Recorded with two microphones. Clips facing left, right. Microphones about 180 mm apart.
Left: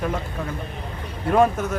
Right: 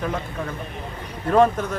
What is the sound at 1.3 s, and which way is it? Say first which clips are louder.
Speech: right 1 dB; 10° left (ahead or behind).